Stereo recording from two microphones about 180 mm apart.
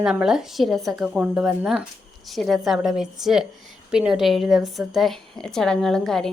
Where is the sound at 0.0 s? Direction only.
5° right (ahead or behind).